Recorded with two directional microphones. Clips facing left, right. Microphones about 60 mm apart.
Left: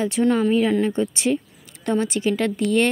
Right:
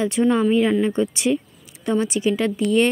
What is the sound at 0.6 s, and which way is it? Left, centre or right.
Speech, right.